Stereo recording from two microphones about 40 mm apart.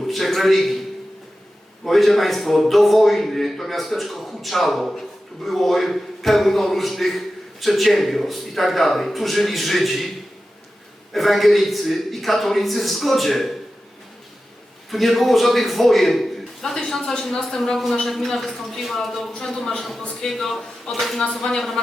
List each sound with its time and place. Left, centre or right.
0.0 s a man's voice: centre
1.8 s speech: centre
11.1 s speech: centre
14.8 s speech: centre
20.9 s speech: left